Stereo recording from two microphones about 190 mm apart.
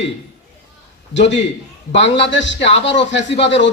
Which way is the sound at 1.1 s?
70° left (ahead or behind).